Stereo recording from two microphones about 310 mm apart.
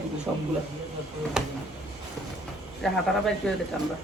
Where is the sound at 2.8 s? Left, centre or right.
Centre.